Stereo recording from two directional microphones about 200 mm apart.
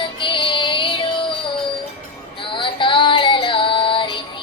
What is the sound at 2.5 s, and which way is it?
Female singing, 25° left (ahead or behind).